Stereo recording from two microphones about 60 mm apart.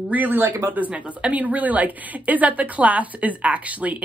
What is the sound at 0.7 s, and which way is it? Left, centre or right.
A woman's voice, right.